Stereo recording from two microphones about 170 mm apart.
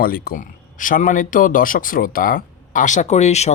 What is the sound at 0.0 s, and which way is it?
Speech, 60° left (ahead or behind).